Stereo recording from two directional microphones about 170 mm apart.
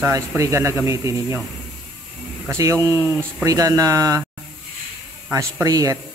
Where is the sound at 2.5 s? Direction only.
20° right (ahead or behind).